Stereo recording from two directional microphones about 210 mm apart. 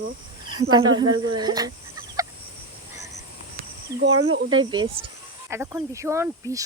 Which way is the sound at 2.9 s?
15° right (ahead or behind).